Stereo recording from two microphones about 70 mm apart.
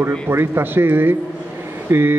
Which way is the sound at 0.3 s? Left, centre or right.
Right.